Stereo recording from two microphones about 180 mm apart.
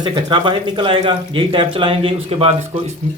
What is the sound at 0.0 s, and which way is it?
Speech, 25° right (ahead or behind).